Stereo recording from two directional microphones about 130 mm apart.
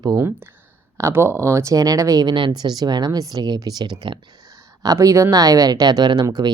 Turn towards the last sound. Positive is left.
turn(degrees=-30)  # may be behind; listen again after turning